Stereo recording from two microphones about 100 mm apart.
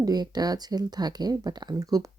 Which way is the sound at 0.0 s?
40° right (ahead or behind).